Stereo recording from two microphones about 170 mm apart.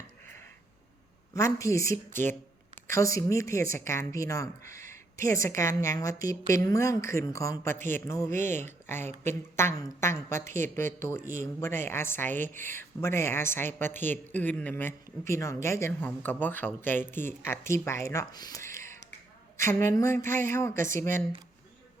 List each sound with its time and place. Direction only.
1.3 s a woman's voice: 15° left (ahead or behind)
11.2 s speech: 50° right (ahead or behind)
11.6 s a woman's voice: 15° left (ahead or behind)